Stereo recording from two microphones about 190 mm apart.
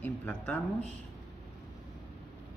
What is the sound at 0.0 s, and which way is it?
Speech, 10° left (ahead or behind).